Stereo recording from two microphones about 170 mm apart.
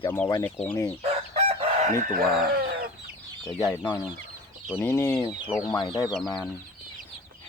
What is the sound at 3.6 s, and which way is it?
Speech, 25° left (ahead or behind).